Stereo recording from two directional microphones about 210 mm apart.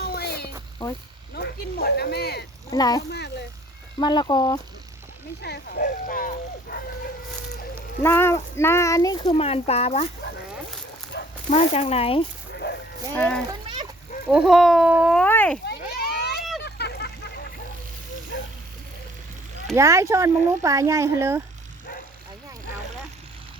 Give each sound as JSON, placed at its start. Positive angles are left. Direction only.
{"t": 0.0, "sound": "a sound", "side_deg": 50}
{"t": 1.4, "sound": "speech", "side_deg": 50}
{"t": 2.6, "sound": "speech", "side_deg": 15}
{"t": 3.1, "sound": "speech", "side_deg": 50}
{"t": 4.0, "sound": "speech", "side_deg": 20}
{"t": 5.4, "sound": "speech", "side_deg": 50}
{"t": 8.0, "sound": "speech", "side_deg": 10}
{"t": 11.1, "sound": "dog", "side_deg": 55}
{"t": 11.5, "sound": "speech", "side_deg": 30}
{"t": 13.1, "sound": "speech", "side_deg": 5}
{"t": 15.6, "sound": "a sound", "side_deg": 50}
{"t": 19.7, "sound": "speech", "side_deg": -15}